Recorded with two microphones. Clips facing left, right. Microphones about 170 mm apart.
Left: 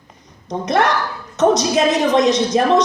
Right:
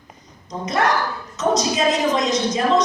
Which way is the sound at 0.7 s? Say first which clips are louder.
Left 3 dB; 75° left (ahead or behind).